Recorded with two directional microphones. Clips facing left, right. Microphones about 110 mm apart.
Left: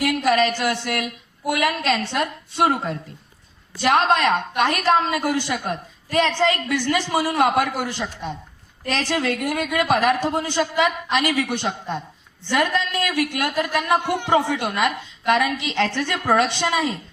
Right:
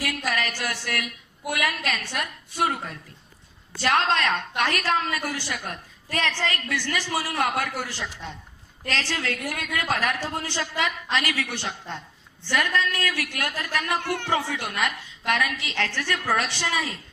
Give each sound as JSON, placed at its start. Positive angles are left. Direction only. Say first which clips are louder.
{"t": 0.0, "sound": "a sound", "louder": "left 9 dB", "side_deg": 20}
{"t": 0.9, "sound": "a man's voice", "louder": "left 5 dB", "side_deg": 25}
{"t": 3.8, "sound": "a woman's voice", "louder": "left 5 dB", "side_deg": 15}